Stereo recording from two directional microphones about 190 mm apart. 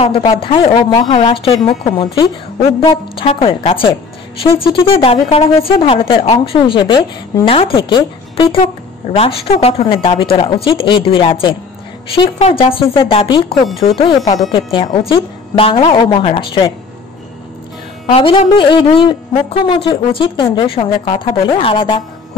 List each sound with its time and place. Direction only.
0.0 s a man's voice: 25° left (ahead or behind)
18.0 s a man's voice: 25° left (ahead or behind)